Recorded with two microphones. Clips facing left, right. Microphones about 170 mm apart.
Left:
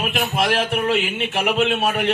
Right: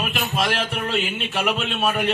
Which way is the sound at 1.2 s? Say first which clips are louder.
Left 4 dB; 65° left (ahead or behind).